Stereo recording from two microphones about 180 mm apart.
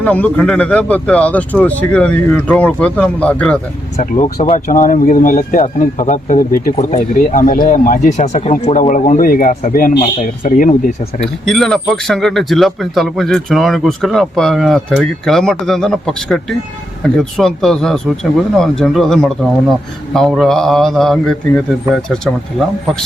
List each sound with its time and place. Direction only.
0.0 s speech: 10° left (ahead or behind)
3.9 s speech: 40° left (ahead or behind)
11.4 s speech: centre (ahead or behind)